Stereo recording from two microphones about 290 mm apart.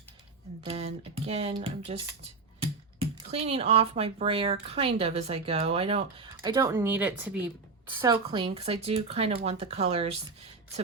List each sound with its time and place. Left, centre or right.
0.6 s speech: right